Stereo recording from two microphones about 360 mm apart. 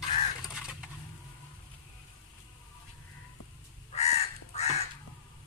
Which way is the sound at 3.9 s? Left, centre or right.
Centre.